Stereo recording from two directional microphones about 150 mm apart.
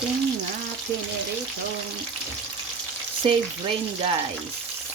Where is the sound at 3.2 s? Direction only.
35° right (ahead or behind).